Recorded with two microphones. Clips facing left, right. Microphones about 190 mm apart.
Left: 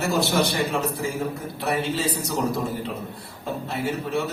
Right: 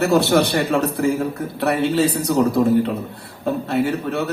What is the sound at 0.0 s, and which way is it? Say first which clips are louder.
Speech: right 7 dB; 65° right (ahead or behind).